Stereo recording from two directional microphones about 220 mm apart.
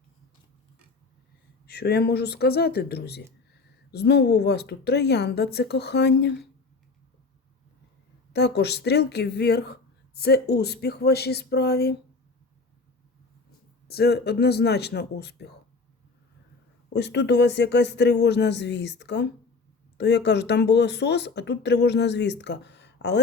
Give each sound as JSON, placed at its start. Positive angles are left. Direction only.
{"t": 1.6, "sound": "speech", "side_deg": 45}
{"t": 8.3, "sound": "speech", "side_deg": 50}
{"t": 13.8, "sound": "speech", "side_deg": 45}
{"t": 16.9, "sound": "speech", "side_deg": 50}